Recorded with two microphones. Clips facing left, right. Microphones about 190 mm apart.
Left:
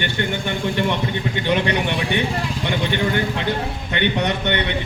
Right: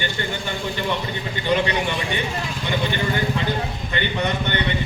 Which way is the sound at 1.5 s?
65° left (ahead or behind).